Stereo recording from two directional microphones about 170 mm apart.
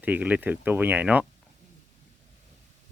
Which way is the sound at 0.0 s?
10° right (ahead or behind).